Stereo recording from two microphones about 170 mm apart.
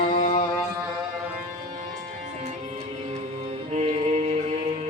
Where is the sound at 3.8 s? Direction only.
40° right (ahead or behind).